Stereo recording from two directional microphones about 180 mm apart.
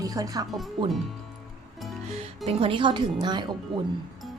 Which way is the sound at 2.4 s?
30° right (ahead or behind).